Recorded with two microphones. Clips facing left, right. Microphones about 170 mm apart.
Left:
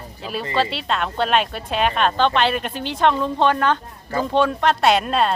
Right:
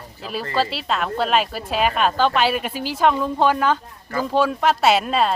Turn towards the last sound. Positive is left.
turn(degrees=0)  # may be behind; listen again after turning